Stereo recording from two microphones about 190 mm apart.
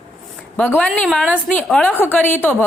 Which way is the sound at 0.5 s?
5° left (ahead or behind).